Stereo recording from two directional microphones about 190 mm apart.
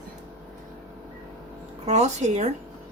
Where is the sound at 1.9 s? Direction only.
35° right (ahead or behind).